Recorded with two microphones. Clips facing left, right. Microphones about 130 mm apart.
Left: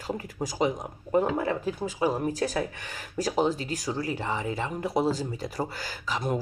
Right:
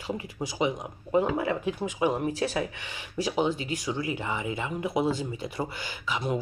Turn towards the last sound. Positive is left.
turn(degrees=40)  # may be behind; listen again after turning